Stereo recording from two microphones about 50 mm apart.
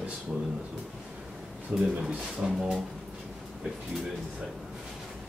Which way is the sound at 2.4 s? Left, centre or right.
Centre.